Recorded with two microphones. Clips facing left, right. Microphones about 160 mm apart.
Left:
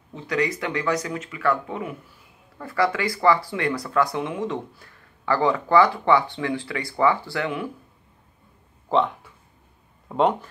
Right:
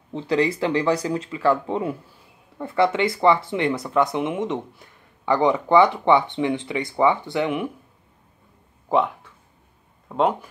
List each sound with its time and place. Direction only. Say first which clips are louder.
0.1 s speech: right 4 dB; 30° right (ahead or behind)
8.8 s a sound: right 1 dB; 10° right (ahead or behind)
10.0 s speech: even; centre (ahead or behind)